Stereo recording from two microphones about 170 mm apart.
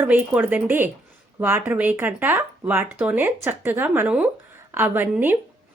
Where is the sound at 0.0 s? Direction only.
10° right (ahead or behind).